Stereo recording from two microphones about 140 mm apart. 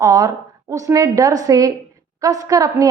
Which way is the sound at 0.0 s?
25° right (ahead or behind).